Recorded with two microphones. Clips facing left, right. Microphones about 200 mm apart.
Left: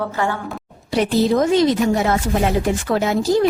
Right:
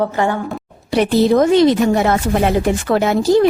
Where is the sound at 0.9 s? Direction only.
65° right (ahead or behind).